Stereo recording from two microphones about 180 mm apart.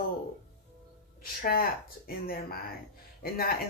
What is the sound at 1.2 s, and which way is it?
Speech, 55° left (ahead or behind).